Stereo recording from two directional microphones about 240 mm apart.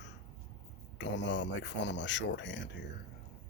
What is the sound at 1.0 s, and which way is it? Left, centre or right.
Speech, left.